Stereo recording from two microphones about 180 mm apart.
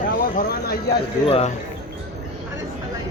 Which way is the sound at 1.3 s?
35° left (ahead or behind).